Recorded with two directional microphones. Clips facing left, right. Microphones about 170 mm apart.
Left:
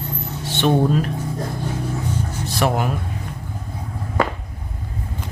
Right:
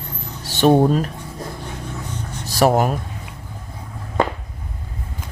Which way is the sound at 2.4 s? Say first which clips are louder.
Right 5 dB; 40° right (ahead or behind).